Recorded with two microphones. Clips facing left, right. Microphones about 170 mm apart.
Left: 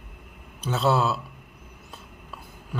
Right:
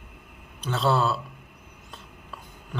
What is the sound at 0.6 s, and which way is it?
Speech, 5° left (ahead or behind).